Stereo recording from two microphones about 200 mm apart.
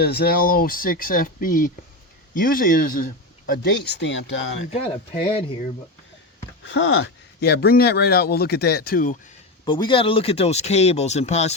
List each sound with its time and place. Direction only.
0.0 s speech: 50° left (ahead or behind); by 4.6 s 70° left (ahead or behind)
4.7 s speech: 30° left (ahead or behind)
6.7 s speech: 75° left (ahead or behind); by 9.1 s 45° left (ahead or behind)
9.6 s speech: 25° left (ahead or behind)